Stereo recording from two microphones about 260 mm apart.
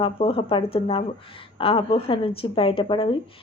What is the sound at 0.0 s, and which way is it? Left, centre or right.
Speech, left.